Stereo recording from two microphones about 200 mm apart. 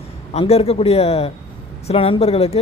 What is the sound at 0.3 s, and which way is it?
Speech, 30° left (ahead or behind).